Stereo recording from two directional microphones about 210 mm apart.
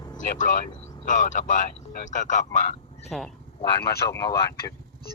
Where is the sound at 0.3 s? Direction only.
40° left (ahead or behind).